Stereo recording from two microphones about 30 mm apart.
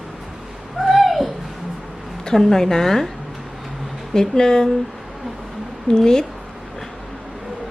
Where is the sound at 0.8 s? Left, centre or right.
Centre.